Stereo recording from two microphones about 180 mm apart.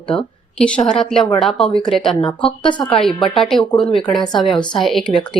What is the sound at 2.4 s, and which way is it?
Speech, 25° left (ahead or behind).